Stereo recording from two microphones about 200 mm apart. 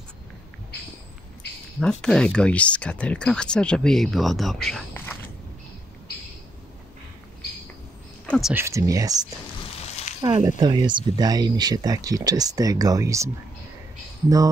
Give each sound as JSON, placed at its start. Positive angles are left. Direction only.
{"t": 1.8, "sound": "speech", "side_deg": 5}
{"t": 8.3, "sound": "speech", "side_deg": 0}
{"t": 8.6, "sound": "speech", "side_deg": -15}
{"t": 9.8, "sound": "a sound", "side_deg": 30}
{"t": 10.2, "sound": "speech", "side_deg": -20}